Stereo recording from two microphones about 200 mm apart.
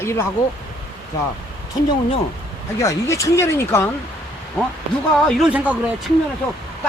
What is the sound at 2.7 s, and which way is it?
Speech, 15° left (ahead or behind).